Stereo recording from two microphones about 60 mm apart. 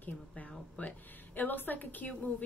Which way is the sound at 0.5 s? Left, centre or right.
Left.